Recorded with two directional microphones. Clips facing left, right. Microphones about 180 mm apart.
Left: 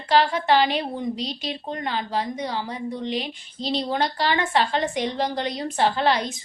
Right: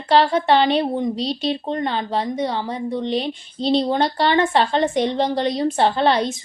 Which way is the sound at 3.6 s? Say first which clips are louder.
Right 6 dB; 30° right (ahead or behind).